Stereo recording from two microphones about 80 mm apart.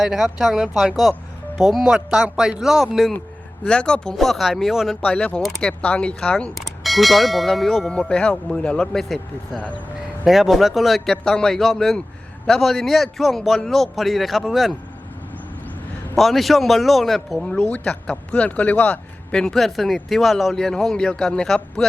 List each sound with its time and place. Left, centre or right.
0.0 s speech: centre
3.6 s speech: centre
5.0 s speech: centre
6.8 s speech: centre
16.1 s speech: centre
17.6 s speech: centre